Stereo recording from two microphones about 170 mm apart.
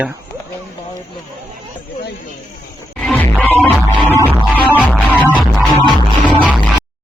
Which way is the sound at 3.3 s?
10° right (ahead or behind).